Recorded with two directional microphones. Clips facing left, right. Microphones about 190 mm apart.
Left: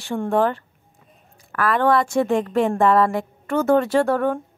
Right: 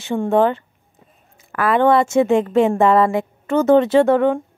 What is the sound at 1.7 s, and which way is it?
Speech, 25° right (ahead or behind).